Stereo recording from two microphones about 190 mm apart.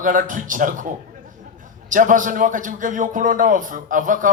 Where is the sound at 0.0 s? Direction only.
45° right (ahead or behind).